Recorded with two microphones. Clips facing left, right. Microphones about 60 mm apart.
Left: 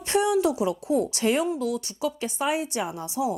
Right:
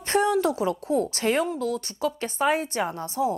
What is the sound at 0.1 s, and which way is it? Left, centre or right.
A woman's voice, right.